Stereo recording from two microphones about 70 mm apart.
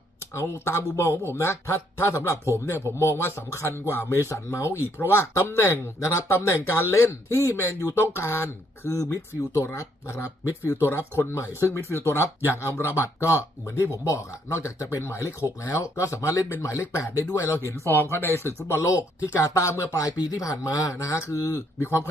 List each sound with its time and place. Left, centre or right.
0.3 s speech: left
1.1 s speech: right
1.4 s speech: left
20.8 s speech: left